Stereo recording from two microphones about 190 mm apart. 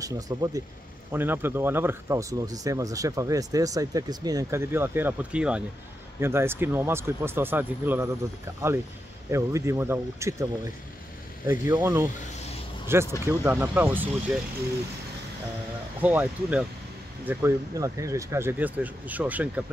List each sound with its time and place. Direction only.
0.0 s speech: 20° right (ahead or behind)
9.3 s speech: 15° right (ahead or behind)
16.0 s speech: 10° right (ahead or behind)